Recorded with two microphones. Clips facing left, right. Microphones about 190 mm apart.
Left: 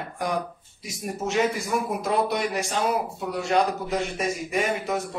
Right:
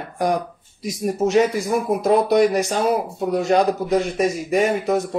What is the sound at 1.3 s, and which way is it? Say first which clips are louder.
A man's voice: right 6 dB; 40° right (ahead or behind).